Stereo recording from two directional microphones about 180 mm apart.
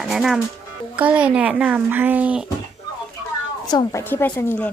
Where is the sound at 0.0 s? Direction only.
Centre (ahead or behind).